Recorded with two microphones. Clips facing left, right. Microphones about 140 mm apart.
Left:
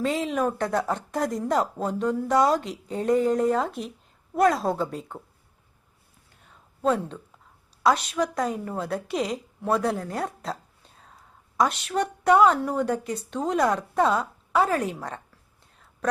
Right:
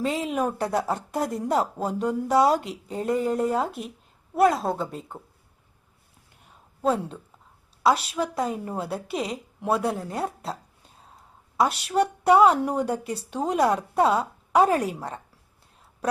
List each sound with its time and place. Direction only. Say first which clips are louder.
0.0 s a woman's voice: left 1 dB; centre (ahead or behind)
6.8 s a woman's voice: even; 5° right (ahead or behind)
7.8 s a sound: even; 5° right (ahead or behind)
8.1 s a woman's voice: left 1 dB; centre (ahead or behind)
8.6 s a woman's voice: even; 15° right (ahead or behind)
8.9 s a woman's voice: left 2 dB; centre (ahead or behind)
11.7 s a woman's voice: right 3 dB; 10° right (ahead or behind)